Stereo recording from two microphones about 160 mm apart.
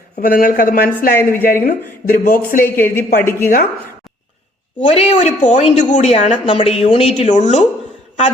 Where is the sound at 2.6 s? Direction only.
15° left (ahead or behind).